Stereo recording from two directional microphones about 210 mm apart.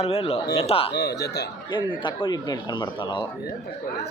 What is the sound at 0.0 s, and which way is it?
Speech, 30° left (ahead or behind).